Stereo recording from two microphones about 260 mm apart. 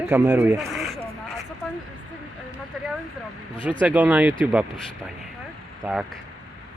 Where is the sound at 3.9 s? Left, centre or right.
Centre.